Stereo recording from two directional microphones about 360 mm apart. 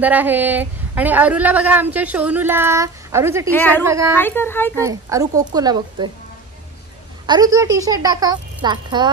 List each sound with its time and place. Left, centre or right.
0.0 s speech: centre
3.5 s speech: centre
3.8 s a woman's voice: centre
4.2 s speech: centre
4.7 s a woman's voice: centre
7.2 s a woman's voice: centre